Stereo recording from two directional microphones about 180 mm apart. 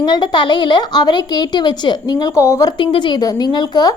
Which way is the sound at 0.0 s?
25° left (ahead or behind).